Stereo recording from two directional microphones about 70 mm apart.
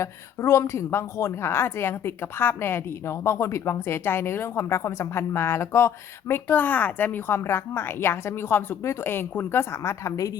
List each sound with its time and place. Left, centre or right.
0.0 s a woman's voice: left